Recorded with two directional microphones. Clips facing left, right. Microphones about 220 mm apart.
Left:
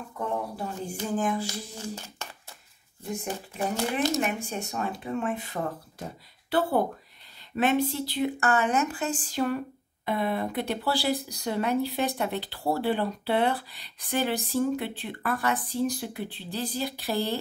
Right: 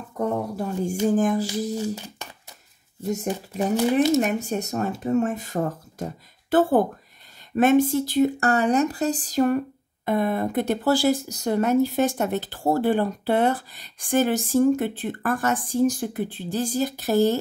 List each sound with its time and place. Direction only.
0.2 s speech: 45° right (ahead or behind)
3.1 s speech: 40° right (ahead or behind)